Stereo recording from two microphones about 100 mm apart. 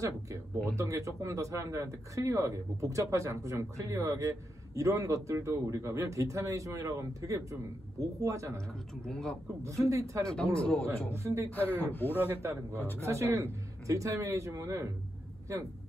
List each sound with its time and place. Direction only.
0.0 s speech: 30° right (ahead or behind)
8.5 s a man's voice: 5° left (ahead or behind)
9.6 s speech: 30° right (ahead or behind)
10.3 s a man's voice: 10° left (ahead or behind)
11.2 s speech: 30° right (ahead or behind)
11.5 s speech: 15° left (ahead or behind)
12.2 s speech: 25° right (ahead or behind)
12.7 s speech: 20° left (ahead or behind)
13.0 s speech: 25° right (ahead or behind)